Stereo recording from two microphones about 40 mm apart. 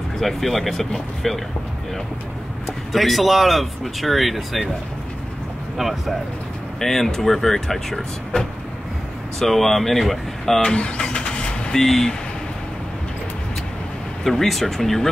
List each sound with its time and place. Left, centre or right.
0.2 s speech: centre
2.9 s speech: centre
5.8 s speech: centre
6.8 s speech: centre
9.4 s speech: centre
10.6 s speech: centre
10.9 s vehicle: left
11.7 s speech: centre
14.2 s speech: centre